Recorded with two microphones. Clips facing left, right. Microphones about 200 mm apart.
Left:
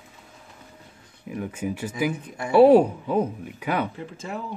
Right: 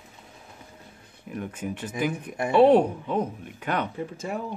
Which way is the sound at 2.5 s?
5° left (ahead or behind).